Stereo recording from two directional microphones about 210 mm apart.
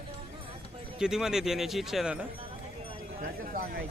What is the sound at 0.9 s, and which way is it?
A man's voice, centre (ahead or behind).